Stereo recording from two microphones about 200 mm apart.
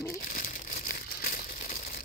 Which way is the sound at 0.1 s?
45° left (ahead or behind).